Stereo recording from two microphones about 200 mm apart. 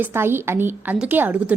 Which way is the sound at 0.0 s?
10° right (ahead or behind).